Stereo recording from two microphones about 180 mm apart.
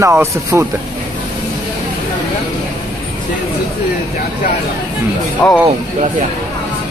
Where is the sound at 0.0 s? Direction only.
15° right (ahead or behind).